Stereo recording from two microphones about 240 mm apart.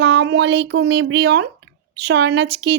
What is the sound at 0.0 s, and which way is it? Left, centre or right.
Speech, right.